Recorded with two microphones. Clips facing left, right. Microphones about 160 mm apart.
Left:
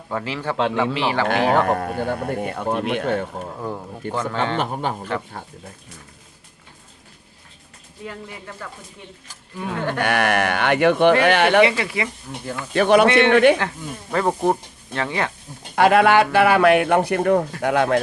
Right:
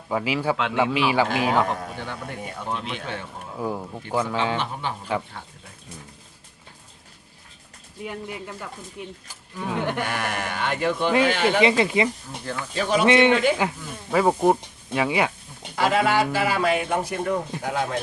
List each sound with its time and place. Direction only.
0.1 s speech: 10° right (ahead or behind)
0.5 s a man's voice: 35° left (ahead or behind)
0.8 s speech: 10° right (ahead or behind)
1.3 s speech: 60° left (ahead or behind)
4.1 s speech: 10° right (ahead or behind)
4.5 s speech: 45° left (ahead or behind)
9.7 s speech: 15° right (ahead or behind)
10.0 s speech: 70° left (ahead or behind)
11.6 s speech: 20° right (ahead or behind)
12.7 s speech: 65° left (ahead or behind)
13.1 s speech: 20° right (ahead or behind)
15.7 s speech: 65° left (ahead or behind)